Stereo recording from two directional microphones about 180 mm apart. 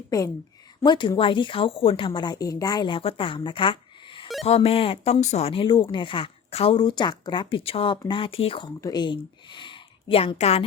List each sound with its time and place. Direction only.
0.1 s speech: 20° left (ahead or behind); by 10.6 s 35° left (ahead or behind)